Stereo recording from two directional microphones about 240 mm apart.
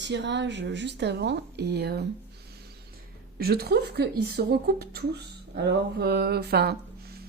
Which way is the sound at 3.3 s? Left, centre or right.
Right.